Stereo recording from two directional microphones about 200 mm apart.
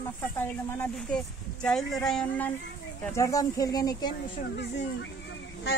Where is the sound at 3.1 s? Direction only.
15° left (ahead or behind).